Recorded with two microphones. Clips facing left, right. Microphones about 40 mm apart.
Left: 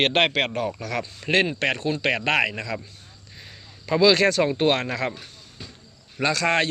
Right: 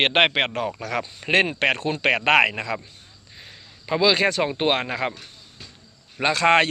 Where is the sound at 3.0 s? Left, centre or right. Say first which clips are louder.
Even; centre.